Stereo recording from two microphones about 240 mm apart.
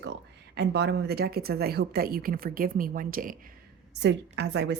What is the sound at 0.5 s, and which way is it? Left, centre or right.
A woman's voice, right.